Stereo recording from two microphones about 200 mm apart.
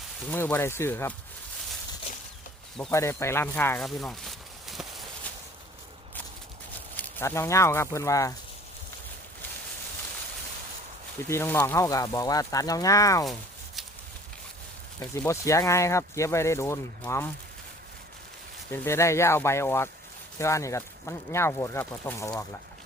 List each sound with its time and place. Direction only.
0.3 s speech: 10° left (ahead or behind)
2.1 s a sound: 30° left (ahead or behind)
2.9 s speech: 15° left (ahead or behind)
3.8 s a sound: centre (ahead or behind)
6.9 s speech: 10° left (ahead or behind)
11.3 s speech: 10° left (ahead or behind)
14.9 s speech: 15° left (ahead or behind)
18.7 s speech: 15° left (ahead or behind)